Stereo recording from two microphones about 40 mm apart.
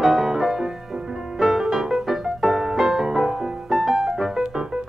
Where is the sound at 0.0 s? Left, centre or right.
Centre.